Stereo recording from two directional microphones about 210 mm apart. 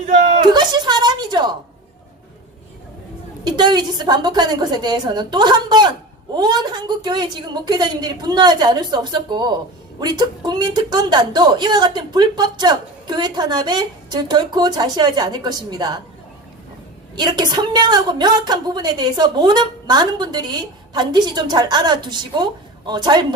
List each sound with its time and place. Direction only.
0.1 s a sound: 35° right (ahead or behind)
0.4 s a woman's voice: 20° right (ahead or behind)
3.4 s a woman's voice: 20° right (ahead or behind)
17.2 s a woman's voice: 20° right (ahead or behind)